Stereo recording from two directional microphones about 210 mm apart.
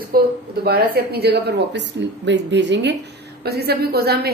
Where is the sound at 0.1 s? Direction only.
45° right (ahead or behind).